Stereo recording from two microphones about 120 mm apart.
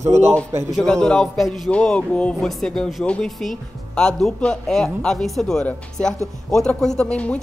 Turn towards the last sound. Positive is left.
turn(degrees=10)  # may be behind; listen again after turning